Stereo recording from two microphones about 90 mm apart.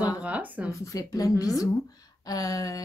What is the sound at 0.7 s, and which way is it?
A woman's voice, 35° left (ahead or behind).